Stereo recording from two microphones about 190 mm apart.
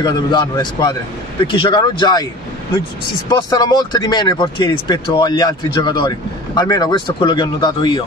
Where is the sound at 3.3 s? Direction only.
20° left (ahead or behind).